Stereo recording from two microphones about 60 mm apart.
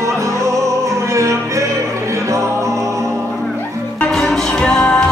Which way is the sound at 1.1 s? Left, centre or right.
Right.